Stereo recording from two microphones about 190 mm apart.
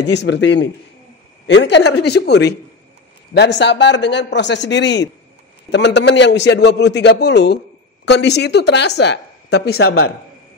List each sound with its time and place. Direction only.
0.0 s a man's voice: 65° left (ahead or behind); by 10.0 s 90° left